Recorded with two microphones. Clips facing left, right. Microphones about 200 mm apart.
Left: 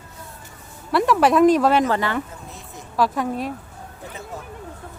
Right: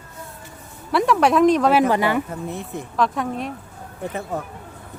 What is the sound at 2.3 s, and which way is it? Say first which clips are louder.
Speech: right 10 dB; 60° right (ahead or behind).